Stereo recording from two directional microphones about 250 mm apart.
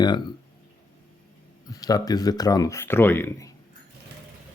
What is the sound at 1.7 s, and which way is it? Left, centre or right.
Speech, centre.